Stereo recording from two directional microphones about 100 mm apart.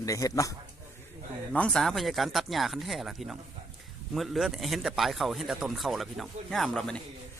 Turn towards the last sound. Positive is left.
turn(degrees=5)  # may be behind; listen again after turning